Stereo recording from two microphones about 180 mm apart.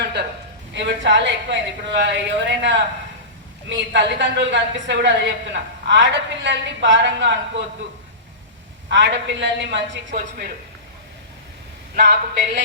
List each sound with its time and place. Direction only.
0.0 s a sound: 65° right (ahead or behind)
0.7 s a woman's voice: 80° right
8.9 s a woman's voice: 85° right
10.1 s a woman's voice: 50° right (ahead or behind)
11.9 s speech: 65° right (ahead or behind)